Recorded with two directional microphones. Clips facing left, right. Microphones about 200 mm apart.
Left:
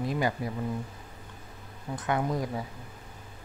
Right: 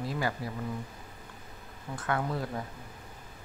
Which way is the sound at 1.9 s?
20° left (ahead or behind).